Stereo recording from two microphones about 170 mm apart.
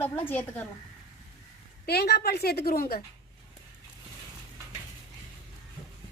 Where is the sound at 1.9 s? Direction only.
70° left (ahead or behind).